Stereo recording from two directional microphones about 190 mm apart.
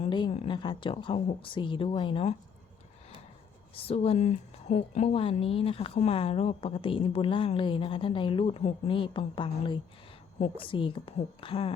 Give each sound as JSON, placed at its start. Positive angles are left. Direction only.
{"t": 0.0, "sound": "a woman's voice", "side_deg": 25}
{"t": 3.8, "sound": "a woman's voice", "side_deg": 30}